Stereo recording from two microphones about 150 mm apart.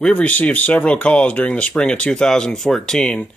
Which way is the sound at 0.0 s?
10° left (ahead or behind).